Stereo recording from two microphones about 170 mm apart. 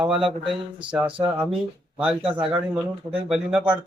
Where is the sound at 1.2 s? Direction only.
25° right (ahead or behind).